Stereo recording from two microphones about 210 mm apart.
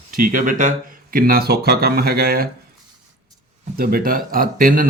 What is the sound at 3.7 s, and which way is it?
Speech, 45° right (ahead or behind).